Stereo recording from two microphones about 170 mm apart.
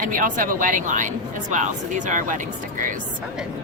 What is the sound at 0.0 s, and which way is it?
Speech, 50° right (ahead or behind).